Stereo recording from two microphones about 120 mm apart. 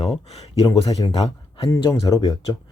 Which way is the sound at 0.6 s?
35° left (ahead or behind).